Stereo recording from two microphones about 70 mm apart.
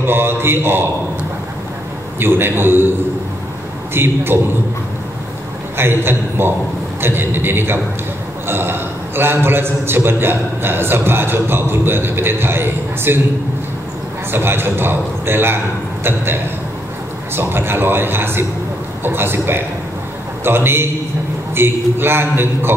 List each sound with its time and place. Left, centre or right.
0.0 s a man's voice: right
2.1 s a man's voice: right
3.9 s a man's voice: right
5.8 s a man's voice: right
14.3 s a man's voice: right
17.4 s a man's voice: right